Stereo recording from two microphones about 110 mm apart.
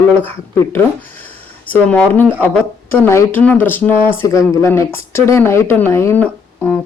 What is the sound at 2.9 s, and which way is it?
Speech, 25° left (ahead or behind).